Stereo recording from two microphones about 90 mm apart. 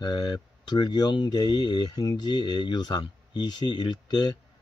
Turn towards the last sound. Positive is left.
turn(degrees=50)  # may be behind; listen again after turning